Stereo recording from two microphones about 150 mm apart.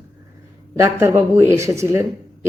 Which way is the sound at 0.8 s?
20° right (ahead or behind).